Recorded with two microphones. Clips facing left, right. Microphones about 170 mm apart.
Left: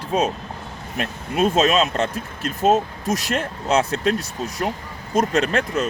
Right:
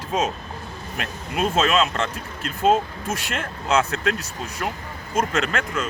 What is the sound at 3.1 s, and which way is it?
Speech, 40° left (ahead or behind).